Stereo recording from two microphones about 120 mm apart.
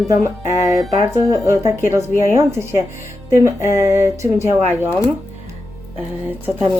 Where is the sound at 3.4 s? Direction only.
25° right (ahead or behind).